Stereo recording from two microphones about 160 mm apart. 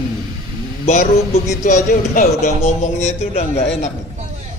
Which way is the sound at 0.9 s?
50° left (ahead or behind).